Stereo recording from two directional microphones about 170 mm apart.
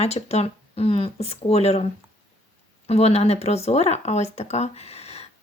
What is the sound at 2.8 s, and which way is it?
Speech, 40° left (ahead or behind).